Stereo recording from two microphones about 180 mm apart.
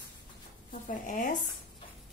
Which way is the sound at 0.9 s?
45° left (ahead or behind).